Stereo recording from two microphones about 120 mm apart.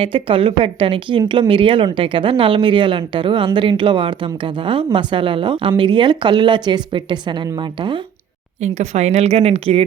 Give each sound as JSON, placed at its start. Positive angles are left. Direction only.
{"t": 0.0, "sound": "speech", "side_deg": -45}
{"t": 8.6, "sound": "a woman's voice", "side_deg": -65}